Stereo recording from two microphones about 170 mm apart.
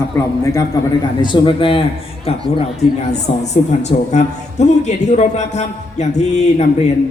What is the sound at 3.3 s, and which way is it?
A man's voice, 35° left (ahead or behind).